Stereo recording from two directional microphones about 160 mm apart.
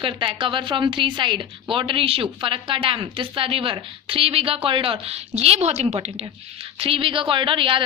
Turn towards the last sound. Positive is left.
turn(degrees=-35)  # may be behind; listen again after turning